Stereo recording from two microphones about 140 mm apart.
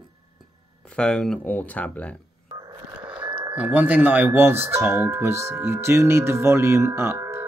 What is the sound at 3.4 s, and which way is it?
Speech, 10° right (ahead or behind).